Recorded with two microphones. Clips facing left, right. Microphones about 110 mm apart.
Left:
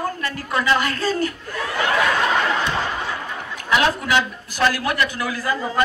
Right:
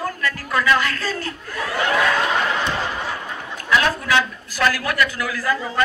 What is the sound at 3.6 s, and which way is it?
A man's voice, 20° left (ahead or behind).